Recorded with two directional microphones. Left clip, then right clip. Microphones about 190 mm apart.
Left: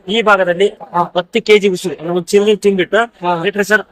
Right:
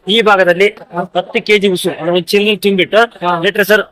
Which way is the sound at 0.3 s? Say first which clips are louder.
Right 1 dB; 35° right (ahead or behind).